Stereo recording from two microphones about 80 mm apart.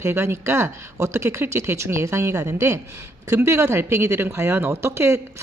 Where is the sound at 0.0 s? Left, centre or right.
Right.